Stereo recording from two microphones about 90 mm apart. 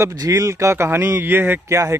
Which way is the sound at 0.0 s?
40° right (ahead or behind).